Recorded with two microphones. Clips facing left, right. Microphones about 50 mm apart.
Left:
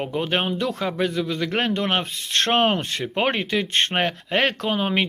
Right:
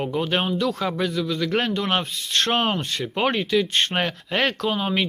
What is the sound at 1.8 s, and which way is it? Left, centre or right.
Speech, centre.